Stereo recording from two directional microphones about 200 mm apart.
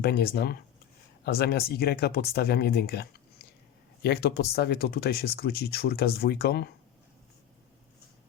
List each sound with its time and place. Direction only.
0.0 s speech: 50° left (ahead or behind)